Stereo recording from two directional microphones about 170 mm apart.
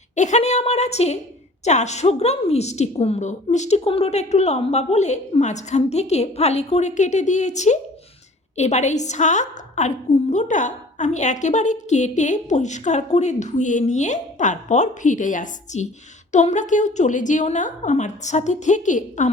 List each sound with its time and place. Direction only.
0.2 s a woman's voice: 45° left (ahead or behind)